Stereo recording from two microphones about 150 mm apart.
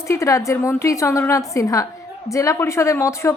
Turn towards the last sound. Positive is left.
turn(degrees=20)  # may be behind; listen again after turning